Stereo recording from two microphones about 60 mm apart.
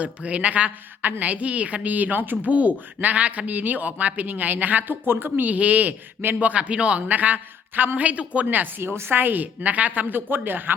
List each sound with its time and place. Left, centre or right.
0.0 s a woman's voice: right